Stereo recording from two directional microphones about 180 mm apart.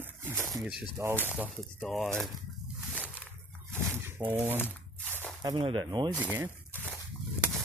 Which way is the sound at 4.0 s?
15° right (ahead or behind).